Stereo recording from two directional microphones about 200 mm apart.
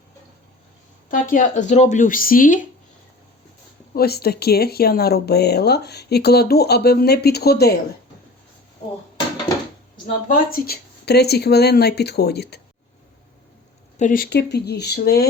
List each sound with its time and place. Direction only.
1.1 s speech: 40° left (ahead or behind)
3.9 s speech: 50° left (ahead or behind)
10.2 s speech: 50° left (ahead or behind)
14.0 s speech: 45° left (ahead or behind)